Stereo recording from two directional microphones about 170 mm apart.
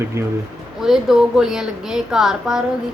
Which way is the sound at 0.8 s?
Centre (ahead or behind).